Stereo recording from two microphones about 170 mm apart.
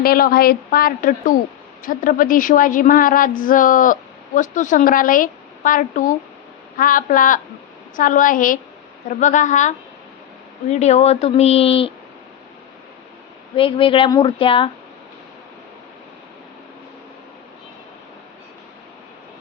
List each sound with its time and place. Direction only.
0.0 s a woman's voice: 60° left (ahead or behind); by 11.9 s 35° left (ahead or behind)
13.6 s speech: 30° left (ahead or behind)